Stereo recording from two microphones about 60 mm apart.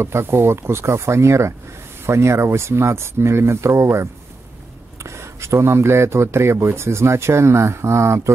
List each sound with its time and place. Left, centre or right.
0.0 s speech: right